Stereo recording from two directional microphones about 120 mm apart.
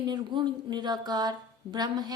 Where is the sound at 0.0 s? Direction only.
40° right (ahead or behind).